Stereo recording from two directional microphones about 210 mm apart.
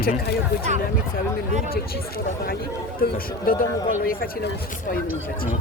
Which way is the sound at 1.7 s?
45° left (ahead or behind).